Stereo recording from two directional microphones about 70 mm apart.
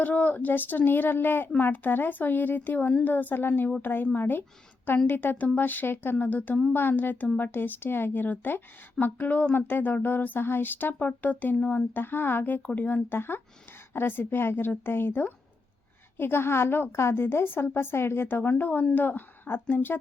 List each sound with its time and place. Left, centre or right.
0.0 s a woman's voice: left